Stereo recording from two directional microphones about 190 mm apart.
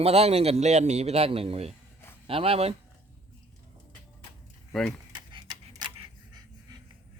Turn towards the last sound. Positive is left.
turn(degrees=-20)  # may be behind; listen again after turning